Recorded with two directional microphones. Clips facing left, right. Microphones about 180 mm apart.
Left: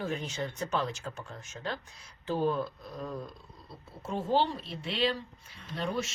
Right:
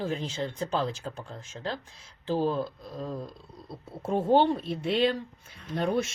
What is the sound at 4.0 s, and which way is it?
Speech, 55° right (ahead or behind).